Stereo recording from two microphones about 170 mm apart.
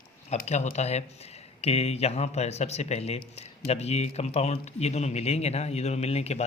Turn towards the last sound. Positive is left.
turn(degrees=40)  # may be behind; listen again after turning